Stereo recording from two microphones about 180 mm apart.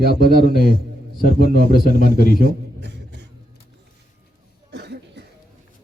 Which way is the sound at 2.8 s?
70° right (ahead or behind).